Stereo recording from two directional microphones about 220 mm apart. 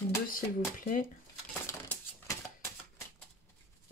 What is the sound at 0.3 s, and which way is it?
Speech, 40° left (ahead or behind).